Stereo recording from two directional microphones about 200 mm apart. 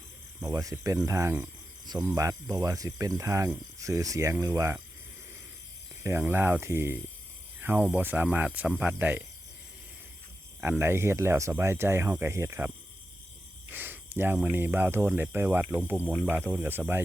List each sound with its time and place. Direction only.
0.3 s speech: 15° right (ahead or behind)
6.0 s speech: 15° right (ahead or behind)
10.6 s speech: 10° right (ahead or behind)